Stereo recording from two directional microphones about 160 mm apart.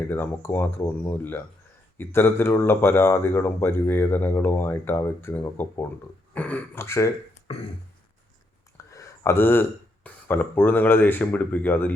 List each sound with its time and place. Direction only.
0.1 s speech: 15° left (ahead or behind)
7.5 s a sound: 35° left (ahead or behind)
8.8 s speech: 20° left (ahead or behind)